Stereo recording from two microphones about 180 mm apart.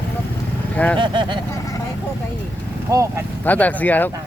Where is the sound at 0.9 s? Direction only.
25° right (ahead or behind).